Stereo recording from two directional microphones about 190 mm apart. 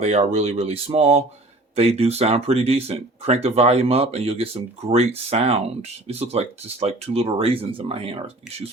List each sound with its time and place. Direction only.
0.0 s speech: 35° right (ahead or behind)